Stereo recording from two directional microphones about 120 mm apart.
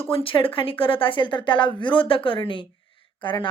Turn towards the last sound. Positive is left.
turn(degrees=40)  # may be behind; listen again after turning